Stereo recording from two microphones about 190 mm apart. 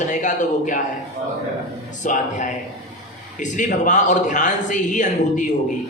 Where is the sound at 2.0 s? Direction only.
40° left (ahead or behind).